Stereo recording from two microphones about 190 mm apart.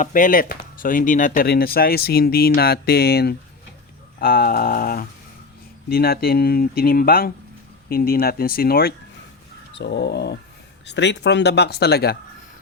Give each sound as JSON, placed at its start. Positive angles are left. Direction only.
{"t": 0.0, "sound": "speech", "side_deg": 45}
{"t": 9.7, "sound": "speech", "side_deg": 65}